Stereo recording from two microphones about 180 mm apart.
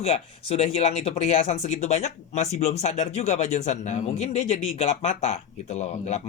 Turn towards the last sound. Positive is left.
turn(degrees=40)  # may be behind; listen again after turning